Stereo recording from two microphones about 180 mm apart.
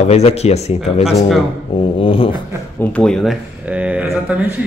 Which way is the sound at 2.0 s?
30° left (ahead or behind).